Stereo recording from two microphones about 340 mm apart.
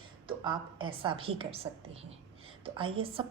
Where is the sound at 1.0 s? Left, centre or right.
Centre.